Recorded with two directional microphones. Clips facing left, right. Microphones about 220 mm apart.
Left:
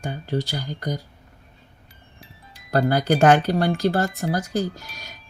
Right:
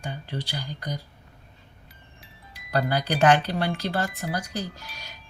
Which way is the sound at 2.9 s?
45° left (ahead or behind).